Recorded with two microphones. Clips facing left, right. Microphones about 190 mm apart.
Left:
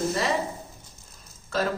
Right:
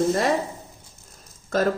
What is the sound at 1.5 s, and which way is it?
Speech, 50° right (ahead or behind).